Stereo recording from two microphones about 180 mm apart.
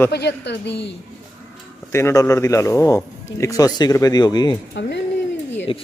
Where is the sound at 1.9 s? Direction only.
15° left (ahead or behind).